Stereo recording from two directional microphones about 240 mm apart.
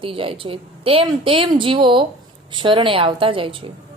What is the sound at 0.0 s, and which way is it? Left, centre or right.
A woman's voice, right.